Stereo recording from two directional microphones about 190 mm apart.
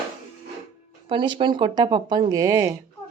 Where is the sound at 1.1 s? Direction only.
25° right (ahead or behind).